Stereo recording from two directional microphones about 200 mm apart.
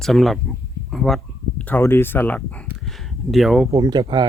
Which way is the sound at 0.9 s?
Centre (ahead or behind).